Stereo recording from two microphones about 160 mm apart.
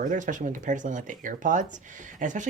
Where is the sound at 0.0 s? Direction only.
55° right (ahead or behind).